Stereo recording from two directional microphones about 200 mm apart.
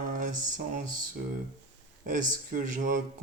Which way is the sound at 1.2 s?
45° right (ahead or behind).